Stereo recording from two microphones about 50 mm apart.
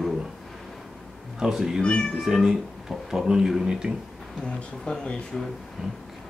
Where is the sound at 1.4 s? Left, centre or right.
Centre.